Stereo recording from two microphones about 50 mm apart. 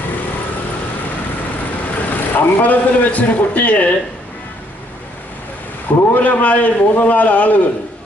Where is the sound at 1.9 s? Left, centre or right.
Left.